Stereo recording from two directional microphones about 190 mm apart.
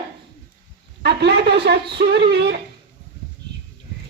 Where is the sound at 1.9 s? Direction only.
60° right (ahead or behind).